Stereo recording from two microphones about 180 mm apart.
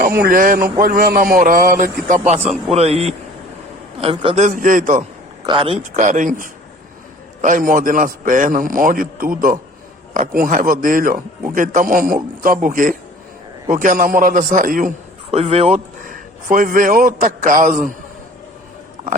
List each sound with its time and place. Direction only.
0.0 s a man's voice: 55° right (ahead or behind); by 4.4 s 30° right (ahead or behind)
4.4 s a man's voice: 45° right (ahead or behind)
5.5 s a man's voice: 30° right (ahead or behind)
5.8 s a man's voice: 45° right (ahead or behind)
15.3 s speech: 35° right (ahead or behind)